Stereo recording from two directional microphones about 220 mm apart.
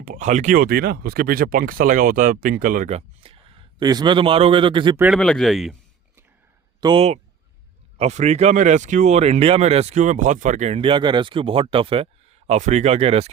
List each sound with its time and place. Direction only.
0.0 s speech: 35° right (ahead or behind)
3.8 s speech: 20° right (ahead or behind)
4.9 s speech: 5° right (ahead or behind)
6.7 s speech: 20° right (ahead or behind)